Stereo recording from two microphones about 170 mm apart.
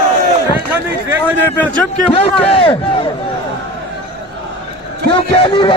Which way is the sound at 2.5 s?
30° left (ahead or behind).